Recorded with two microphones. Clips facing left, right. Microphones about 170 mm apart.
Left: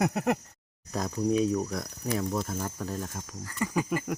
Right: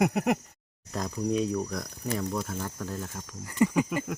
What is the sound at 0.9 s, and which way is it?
Speech, centre (ahead or behind).